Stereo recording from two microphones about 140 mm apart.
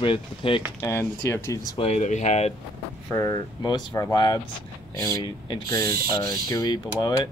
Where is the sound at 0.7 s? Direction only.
20° left (ahead or behind).